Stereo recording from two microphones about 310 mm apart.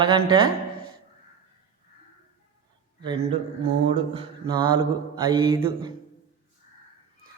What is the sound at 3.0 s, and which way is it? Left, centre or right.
Mantra, centre.